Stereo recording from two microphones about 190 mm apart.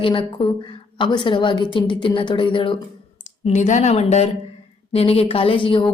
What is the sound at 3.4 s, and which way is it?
Speech, 40° left (ahead or behind).